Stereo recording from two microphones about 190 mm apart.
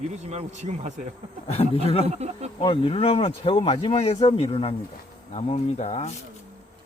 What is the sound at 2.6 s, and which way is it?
Speech, 30° left (ahead or behind).